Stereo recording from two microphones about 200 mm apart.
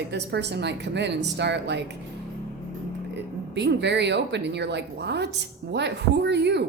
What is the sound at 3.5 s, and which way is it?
A woman's voice, 60° right (ahead or behind).